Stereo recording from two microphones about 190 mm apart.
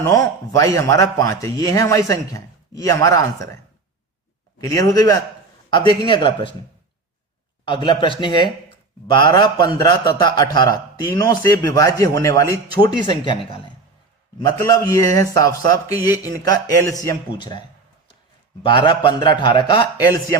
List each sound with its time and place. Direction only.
0.0 s a man's voice: 15° left (ahead or behind)
4.6 s a man's voice: 20° left (ahead or behind)
7.6 s a man's voice: 25° left (ahead or behind)
18.6 s a man's voice: 25° left (ahead or behind)